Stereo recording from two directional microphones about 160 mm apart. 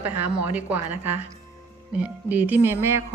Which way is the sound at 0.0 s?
10° right (ahead or behind).